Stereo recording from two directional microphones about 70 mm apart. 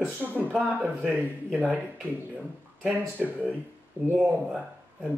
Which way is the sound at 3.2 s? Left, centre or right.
Right.